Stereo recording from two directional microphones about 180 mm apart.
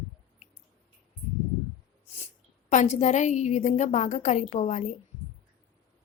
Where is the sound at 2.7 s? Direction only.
40° left (ahead or behind).